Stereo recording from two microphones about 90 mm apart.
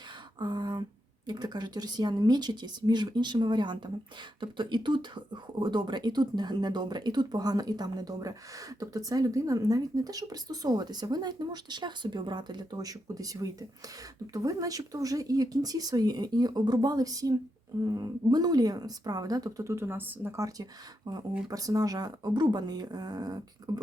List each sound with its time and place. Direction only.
0.3 s a sound: 55° right (ahead or behind)
1.3 s speech: 55° right (ahead or behind); by 20.3 s 25° right (ahead or behind)
20.3 s speech: 40° right (ahead or behind)